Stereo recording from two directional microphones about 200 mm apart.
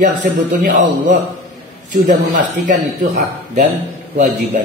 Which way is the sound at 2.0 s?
40° right (ahead or behind).